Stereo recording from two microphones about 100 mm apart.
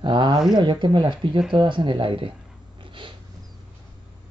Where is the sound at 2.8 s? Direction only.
55° right (ahead or behind).